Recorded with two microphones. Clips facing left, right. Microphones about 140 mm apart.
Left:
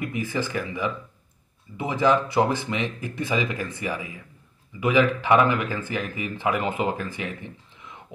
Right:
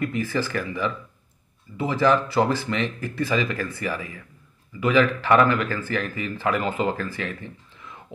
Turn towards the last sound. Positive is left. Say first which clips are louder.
# right 1 dB
turn(degrees=15)  # may be behind; listen again after turning